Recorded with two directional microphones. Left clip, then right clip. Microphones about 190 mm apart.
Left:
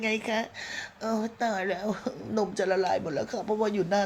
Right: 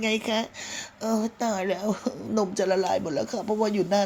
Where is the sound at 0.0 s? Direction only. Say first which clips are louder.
Right 2 dB; 35° right (ahead or behind).